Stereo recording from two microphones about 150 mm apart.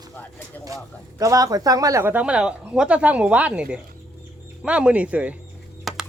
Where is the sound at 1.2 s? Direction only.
25° right (ahead or behind).